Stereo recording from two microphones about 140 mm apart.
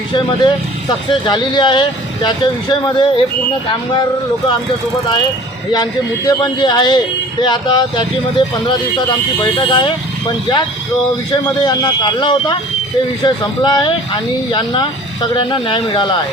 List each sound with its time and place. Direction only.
0.1 s speech: 35° left (ahead or behind)
5.7 s speech: 30° left (ahead or behind)
11.6 s speech: 30° left (ahead or behind)